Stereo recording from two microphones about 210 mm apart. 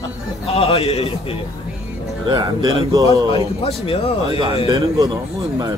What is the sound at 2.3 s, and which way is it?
Speech, 20° right (ahead or behind).